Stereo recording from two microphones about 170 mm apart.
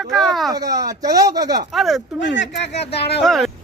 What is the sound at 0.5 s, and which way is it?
Speech, 20° right (ahead or behind).